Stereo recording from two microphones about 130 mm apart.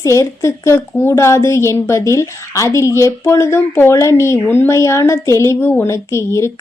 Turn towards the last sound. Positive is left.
turn(degrees=20)  # may be behind; listen again after turning